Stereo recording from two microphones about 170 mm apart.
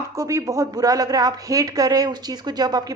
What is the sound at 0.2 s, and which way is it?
Speech, 20° right (ahead or behind).